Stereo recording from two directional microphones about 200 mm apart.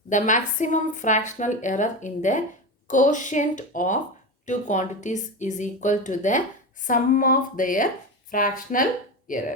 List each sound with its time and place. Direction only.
0.1 s speech: 40° left (ahead or behind)